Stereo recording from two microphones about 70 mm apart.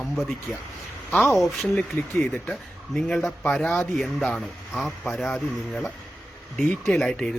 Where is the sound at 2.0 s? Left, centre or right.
Left.